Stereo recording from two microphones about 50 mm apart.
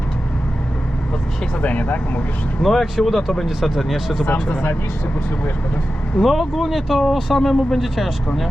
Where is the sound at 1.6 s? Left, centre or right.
Left.